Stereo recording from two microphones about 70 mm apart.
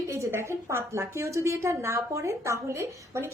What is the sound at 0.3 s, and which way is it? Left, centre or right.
A woman's voice, right.